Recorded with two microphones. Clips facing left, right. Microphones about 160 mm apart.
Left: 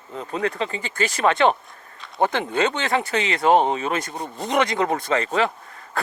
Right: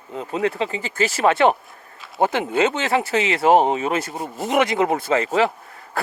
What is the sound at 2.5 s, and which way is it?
Speech, 25° right (ahead or behind).